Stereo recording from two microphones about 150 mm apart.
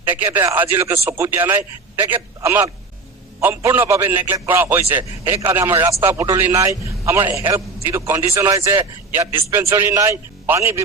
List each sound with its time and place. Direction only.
0.0 s a man's voice: 15° right (ahead or behind)